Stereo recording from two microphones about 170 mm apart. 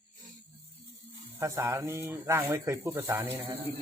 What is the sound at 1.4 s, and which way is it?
Speech, 15° right (ahead or behind).